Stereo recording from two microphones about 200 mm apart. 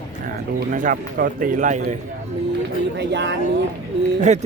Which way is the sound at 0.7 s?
45° right (ahead or behind).